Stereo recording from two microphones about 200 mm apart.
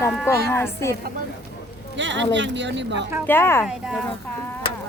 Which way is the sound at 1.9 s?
65° right (ahead or behind).